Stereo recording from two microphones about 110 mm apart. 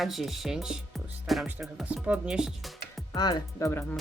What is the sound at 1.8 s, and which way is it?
Speech, 10° right (ahead or behind).